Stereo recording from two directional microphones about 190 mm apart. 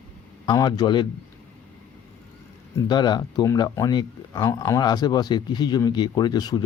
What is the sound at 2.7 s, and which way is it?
Speech, 20° left (ahead or behind).